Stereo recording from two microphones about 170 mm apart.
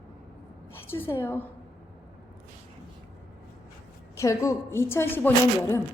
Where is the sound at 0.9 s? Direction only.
15° left (ahead or behind).